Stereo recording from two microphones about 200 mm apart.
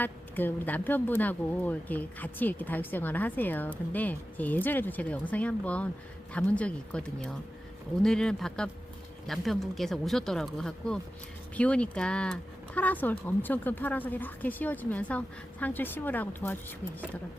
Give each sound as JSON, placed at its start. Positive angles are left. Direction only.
{"t": 0.0, "sound": "speech", "side_deg": 10}